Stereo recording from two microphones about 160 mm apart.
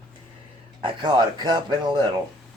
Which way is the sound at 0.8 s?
30° right (ahead or behind).